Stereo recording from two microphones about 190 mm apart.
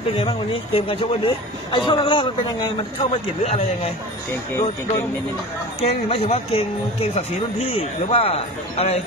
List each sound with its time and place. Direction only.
0.2 s speech: 30° left (ahead or behind)
4.3 s speech: 15° left (ahead or behind)
5.8 s speech: 30° left (ahead or behind)